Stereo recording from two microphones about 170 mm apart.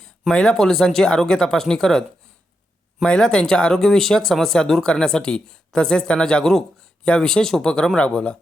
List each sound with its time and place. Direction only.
0.0 s speech: 5° left (ahead or behind)